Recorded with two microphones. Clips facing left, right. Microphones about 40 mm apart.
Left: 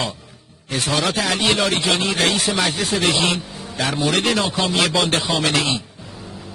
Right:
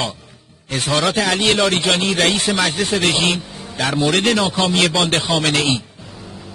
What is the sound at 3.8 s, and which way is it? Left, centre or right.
Speech, right.